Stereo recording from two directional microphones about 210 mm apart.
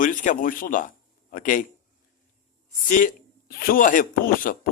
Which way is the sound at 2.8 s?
40° left (ahead or behind).